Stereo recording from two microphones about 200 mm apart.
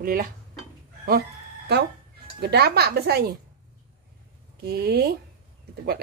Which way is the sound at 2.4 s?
50° right (ahead or behind).